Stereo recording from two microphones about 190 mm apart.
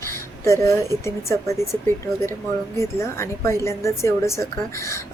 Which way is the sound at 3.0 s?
15° left (ahead or behind).